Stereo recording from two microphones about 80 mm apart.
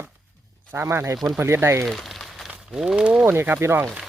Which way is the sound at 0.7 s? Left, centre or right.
Right.